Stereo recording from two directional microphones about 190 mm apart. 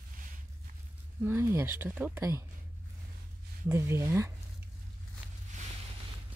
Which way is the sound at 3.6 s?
15° right (ahead or behind).